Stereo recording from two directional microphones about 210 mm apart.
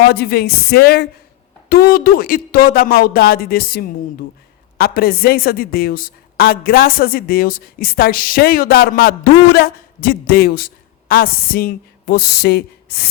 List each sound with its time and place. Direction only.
0.0 s a woman's voice: 50° left (ahead or behind)